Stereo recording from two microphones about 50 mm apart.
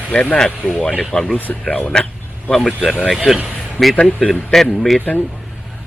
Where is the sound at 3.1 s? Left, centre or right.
Centre.